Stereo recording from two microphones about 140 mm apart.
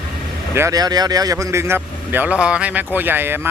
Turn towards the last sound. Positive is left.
turn(degrees=-15)  # may be behind; listen again after turning